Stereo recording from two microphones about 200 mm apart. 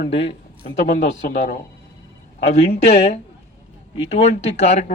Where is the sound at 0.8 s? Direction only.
35° left (ahead or behind).